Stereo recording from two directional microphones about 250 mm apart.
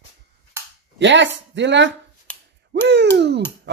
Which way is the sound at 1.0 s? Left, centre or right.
Right.